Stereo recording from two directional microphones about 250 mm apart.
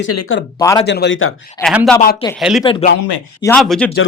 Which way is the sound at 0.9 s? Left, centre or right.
Left.